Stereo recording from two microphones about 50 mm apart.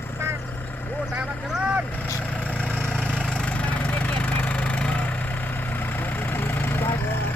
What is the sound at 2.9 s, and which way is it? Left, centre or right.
Vehicle, centre.